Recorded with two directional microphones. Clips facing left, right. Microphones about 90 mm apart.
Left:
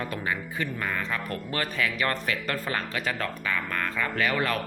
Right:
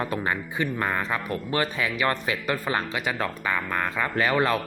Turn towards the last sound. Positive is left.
turn(degrees=-25)  # may be behind; listen again after turning